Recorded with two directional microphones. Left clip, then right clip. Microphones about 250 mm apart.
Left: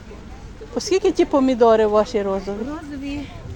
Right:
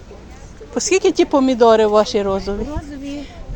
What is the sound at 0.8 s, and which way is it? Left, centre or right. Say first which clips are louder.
Speech: right 3 dB; centre.